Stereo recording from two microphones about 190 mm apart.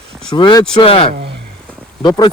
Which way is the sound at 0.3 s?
25° left (ahead or behind).